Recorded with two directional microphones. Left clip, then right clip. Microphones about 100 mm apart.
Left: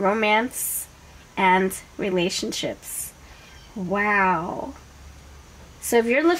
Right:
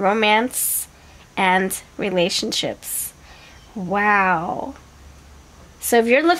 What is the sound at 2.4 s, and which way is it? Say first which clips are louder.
Speech: right 5 dB; 40° right (ahead or behind).